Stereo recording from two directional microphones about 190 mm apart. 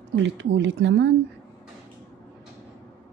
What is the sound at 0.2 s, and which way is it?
Speech, 75° right (ahead or behind).